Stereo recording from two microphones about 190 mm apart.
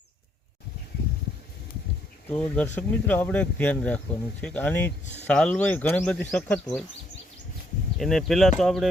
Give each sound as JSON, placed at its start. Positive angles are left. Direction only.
{"t": 2.3, "sound": "speech", "side_deg": 5}
{"t": 5.0, "sound": "speech", "side_deg": 35}
{"t": 5.3, "sound": "speech", "side_deg": 5}
{"t": 7.9, "sound": "speech", "side_deg": 0}